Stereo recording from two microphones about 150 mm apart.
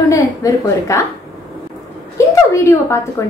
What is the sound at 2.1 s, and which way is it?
A woman's voice, 20° left (ahead or behind).